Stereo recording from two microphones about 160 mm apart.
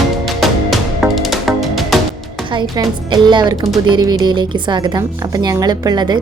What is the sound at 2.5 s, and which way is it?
A woman's voice, 25° right (ahead or behind).